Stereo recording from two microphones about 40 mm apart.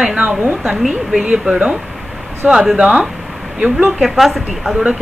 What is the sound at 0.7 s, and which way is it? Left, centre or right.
Speech, centre.